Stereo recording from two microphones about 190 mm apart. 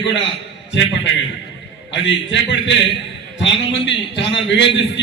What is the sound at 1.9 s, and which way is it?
A man's voice, 70° left (ahead or behind).